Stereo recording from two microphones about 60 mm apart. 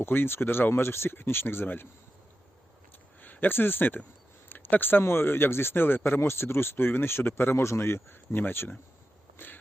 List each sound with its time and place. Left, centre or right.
0.0 s speech: left
3.2 s speech: left